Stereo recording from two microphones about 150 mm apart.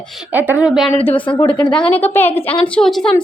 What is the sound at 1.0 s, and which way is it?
Speech, 35° left (ahead or behind).